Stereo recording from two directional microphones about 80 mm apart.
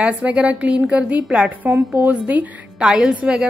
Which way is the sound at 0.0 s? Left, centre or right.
Centre.